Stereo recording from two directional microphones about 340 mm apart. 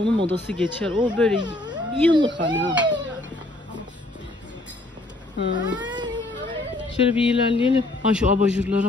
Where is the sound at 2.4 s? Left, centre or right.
Right.